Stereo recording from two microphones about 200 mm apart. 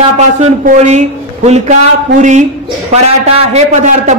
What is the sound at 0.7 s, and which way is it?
A man's voice, 35° right (ahead or behind).